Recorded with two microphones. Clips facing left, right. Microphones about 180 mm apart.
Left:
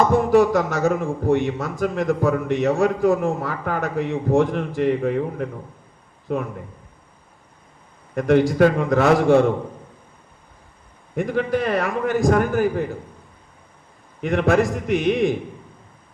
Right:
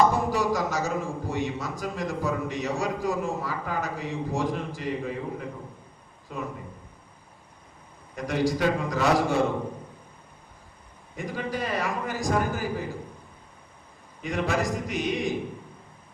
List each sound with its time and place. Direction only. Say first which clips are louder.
0.1 s a man's voice: left 10 dB; 60° left (ahead or behind)
8.1 s a man's voice: left 9 dB; 55° left (ahead or behind)
11.1 s a man's voice: left 10 dB; 60° left (ahead or behind)
14.2 s a man's voice: left 9 dB; 60° left (ahead or behind)